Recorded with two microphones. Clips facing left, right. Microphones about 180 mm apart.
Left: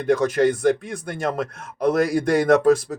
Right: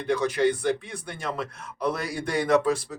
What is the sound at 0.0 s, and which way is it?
Speech, 45° left (ahead or behind).